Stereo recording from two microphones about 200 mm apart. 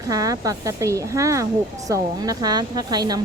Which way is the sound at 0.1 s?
15° right (ahead or behind).